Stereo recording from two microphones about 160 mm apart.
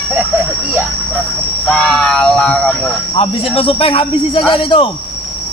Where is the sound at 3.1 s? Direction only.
35° left (ahead or behind).